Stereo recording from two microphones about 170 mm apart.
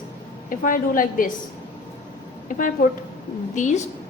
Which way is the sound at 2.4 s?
50° left (ahead or behind).